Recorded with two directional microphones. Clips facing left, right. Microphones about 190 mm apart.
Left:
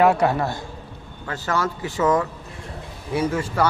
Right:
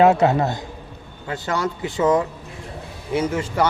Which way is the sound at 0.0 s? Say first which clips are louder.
Right 3 dB; 25° right (ahead or behind).